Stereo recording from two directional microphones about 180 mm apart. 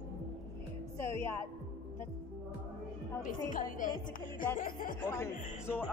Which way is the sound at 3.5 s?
50° left (ahead or behind).